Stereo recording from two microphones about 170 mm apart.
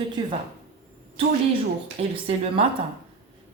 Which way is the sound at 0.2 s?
25° right (ahead or behind).